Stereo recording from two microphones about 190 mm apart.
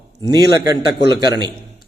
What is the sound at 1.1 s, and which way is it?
Speech, 20° right (ahead or behind).